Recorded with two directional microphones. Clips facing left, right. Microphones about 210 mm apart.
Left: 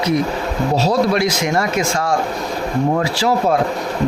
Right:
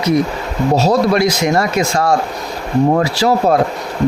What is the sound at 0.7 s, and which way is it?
Speech, 45° right (ahead or behind).